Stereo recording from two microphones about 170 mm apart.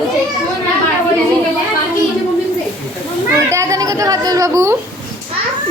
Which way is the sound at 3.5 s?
15° right (ahead or behind).